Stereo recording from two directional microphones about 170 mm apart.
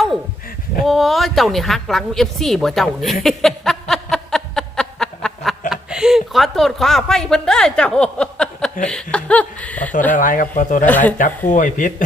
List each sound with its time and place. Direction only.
0.9 s a woman's voice: centre (ahead or behind)
8.8 s chuckle: 5° left (ahead or behind)
9.1 s speech: 5° left (ahead or behind)
10.1 s speech: 50° left (ahead or behind)
10.8 s speech: 10° left (ahead or behind)
11.2 s speech: 50° left (ahead or behind)